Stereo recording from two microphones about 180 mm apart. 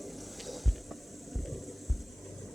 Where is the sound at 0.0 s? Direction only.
Centre (ahead or behind).